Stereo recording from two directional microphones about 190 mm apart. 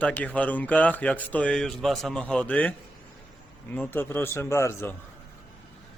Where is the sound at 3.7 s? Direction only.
10° left (ahead or behind).